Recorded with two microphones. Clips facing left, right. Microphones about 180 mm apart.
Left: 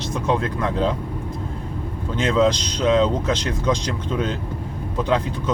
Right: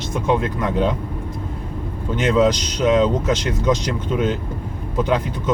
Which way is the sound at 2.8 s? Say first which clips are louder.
Right 2 dB; 20° right (ahead or behind).